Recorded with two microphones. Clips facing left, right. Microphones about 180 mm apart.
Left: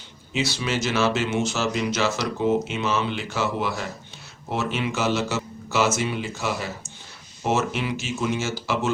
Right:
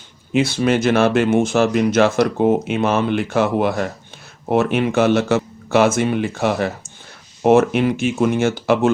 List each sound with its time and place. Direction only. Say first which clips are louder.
0.3 s speech: right 9 dB; 55° right (ahead or behind)